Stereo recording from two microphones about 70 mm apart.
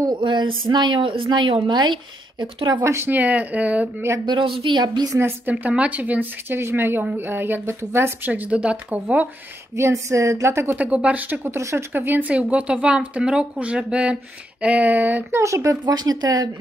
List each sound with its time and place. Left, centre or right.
0.0 s speech: right
2.8 s speech: right
3.1 s speech: right
4.3 s speech: right
5.5 s speech: right
8.3 s speech: centre
9.8 s a woman's voice: right
10.8 s speech: centre
11.5 s speech: right
12.3 s speech: centre
15.3 s a woman's voice: right
15.8 s speech: right